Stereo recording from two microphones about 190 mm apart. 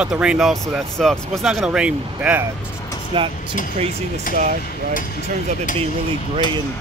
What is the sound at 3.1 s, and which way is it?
Speech, 25° right (ahead or behind).